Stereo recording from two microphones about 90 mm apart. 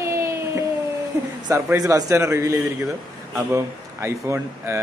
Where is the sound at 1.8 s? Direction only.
35° right (ahead or behind).